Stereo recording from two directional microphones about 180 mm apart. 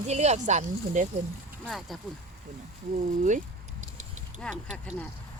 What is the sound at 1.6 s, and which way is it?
Speech, centre (ahead or behind).